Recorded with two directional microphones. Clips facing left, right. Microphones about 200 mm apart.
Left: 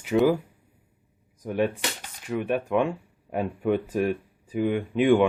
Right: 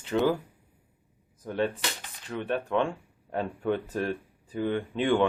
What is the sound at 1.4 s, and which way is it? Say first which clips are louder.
Speech: left 3 dB; 15° left (ahead or behind).